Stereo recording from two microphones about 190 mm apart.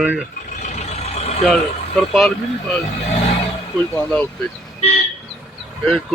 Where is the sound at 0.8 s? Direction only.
35° left (ahead or behind).